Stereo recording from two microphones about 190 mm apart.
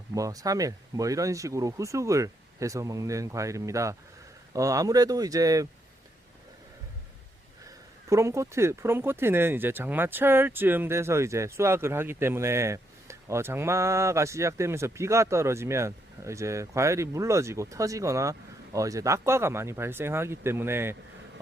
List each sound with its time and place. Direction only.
0.1 s speech: 20° right (ahead or behind)
8.1 s speech: 15° right (ahead or behind)